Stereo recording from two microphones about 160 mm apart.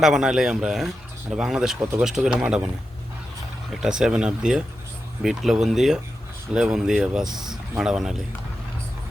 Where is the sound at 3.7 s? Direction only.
5° right (ahead or behind).